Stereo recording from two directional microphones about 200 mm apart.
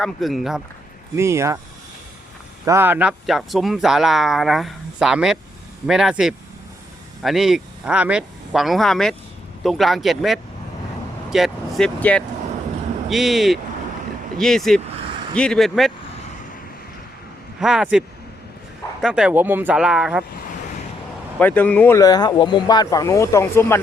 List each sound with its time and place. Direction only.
0.0 s speech: centre (ahead or behind)
1.1 s speech: 15° right (ahead or behind)
2.6 s speech: 10° right (ahead or behind)
17.6 s speech: 5° right (ahead or behind)
19.0 s speech: 5° right (ahead or behind)
21.3 s speech: 10° left (ahead or behind)